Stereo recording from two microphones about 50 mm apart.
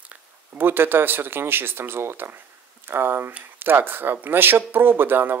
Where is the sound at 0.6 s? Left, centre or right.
Right.